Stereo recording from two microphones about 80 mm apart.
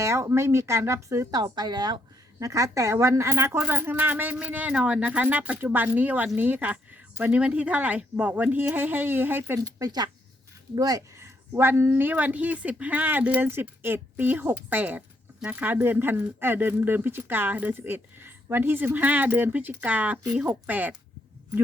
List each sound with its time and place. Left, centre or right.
0.0 s speech: right
1.4 s a woman's voice: right
2.4 s speech: right
9.6 s speech: right
11.2 s speech: right